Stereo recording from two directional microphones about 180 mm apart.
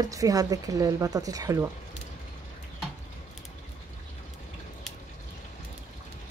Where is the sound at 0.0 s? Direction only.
20° right (ahead or behind).